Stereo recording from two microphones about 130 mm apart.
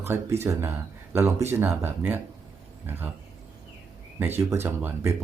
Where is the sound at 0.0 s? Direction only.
20° right (ahead or behind).